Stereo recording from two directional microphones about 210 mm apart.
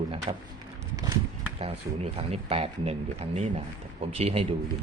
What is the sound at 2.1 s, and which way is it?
Speech, 30° right (ahead or behind).